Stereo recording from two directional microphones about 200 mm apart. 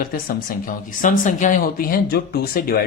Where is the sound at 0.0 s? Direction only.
45° left (ahead or behind).